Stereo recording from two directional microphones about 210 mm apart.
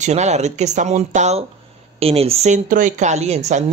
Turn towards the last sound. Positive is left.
turn(degrees=-30)  # may be behind; listen again after turning